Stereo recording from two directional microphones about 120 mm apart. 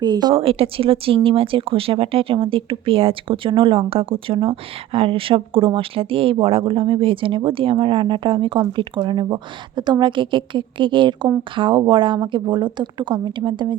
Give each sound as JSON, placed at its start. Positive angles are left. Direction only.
{"t": 0.0, "sound": "a woman's voice", "side_deg": -35}
{"t": 0.3, "sound": "a woman's voice", "side_deg": -50}